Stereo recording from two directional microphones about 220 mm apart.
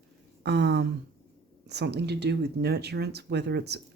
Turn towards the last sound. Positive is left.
turn(degrees=-50)  # may be behind; listen again after turning